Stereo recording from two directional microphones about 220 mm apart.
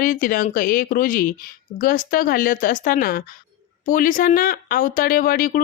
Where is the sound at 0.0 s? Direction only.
40° left (ahead or behind).